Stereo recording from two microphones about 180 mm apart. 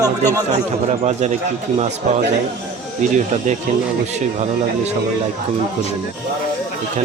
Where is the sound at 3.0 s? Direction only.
40° right (ahead or behind).